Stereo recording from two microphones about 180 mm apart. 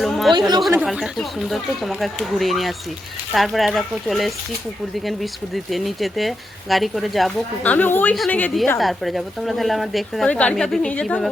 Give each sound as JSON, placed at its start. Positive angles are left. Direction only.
{"t": 0.0, "sound": "chatter", "side_deg": 0}
{"t": 0.3, "sound": "speech", "side_deg": -25}
{"t": 0.7, "sound": "a woman's voice", "side_deg": -10}
{"t": 5.7, "sound": "a woman's voice", "side_deg": 0}